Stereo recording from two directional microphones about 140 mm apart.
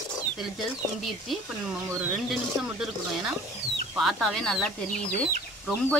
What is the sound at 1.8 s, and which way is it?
Speech, 15° right (ahead or behind).